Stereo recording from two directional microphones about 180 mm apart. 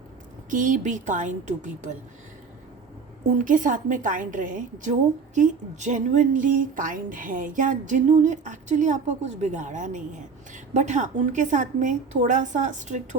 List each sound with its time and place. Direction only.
0.5 s a woman's voice: 45° right (ahead or behind)
3.4 s a woman's voice: 45° right (ahead or behind)